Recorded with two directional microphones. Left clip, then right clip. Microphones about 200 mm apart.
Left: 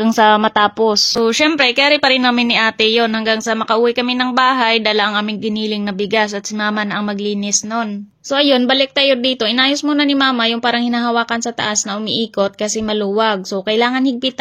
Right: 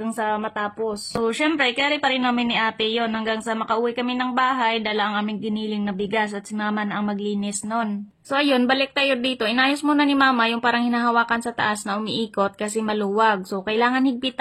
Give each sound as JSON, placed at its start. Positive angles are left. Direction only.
{"t": 0.0, "sound": "speech", "side_deg": 50}
{"t": 1.2, "sound": "speech", "side_deg": 30}
{"t": 8.4, "sound": "speech", "side_deg": 20}
{"t": 12.9, "sound": "speech", "side_deg": 20}